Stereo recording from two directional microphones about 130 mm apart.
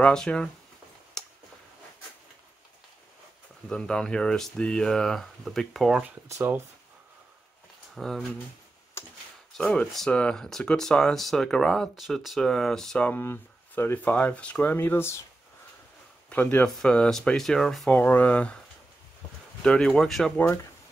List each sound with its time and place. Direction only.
0.0 s speech: 5° left (ahead or behind)
1.2 s tick-tock: 5° left (ahead or behind)
3.6 s speech: 5° left (ahead or behind)
6.0 s speech: 20° right (ahead or behind)
7.9 s speech: centre (ahead or behind)
9.6 s speech: 5° left (ahead or behind)
16.3 s speech: 10° left (ahead or behind)
19.6 s speech: 5° left (ahead or behind)